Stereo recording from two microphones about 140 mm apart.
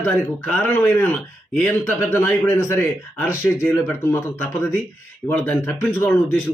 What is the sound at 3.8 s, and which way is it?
Speech, 15° left (ahead or behind).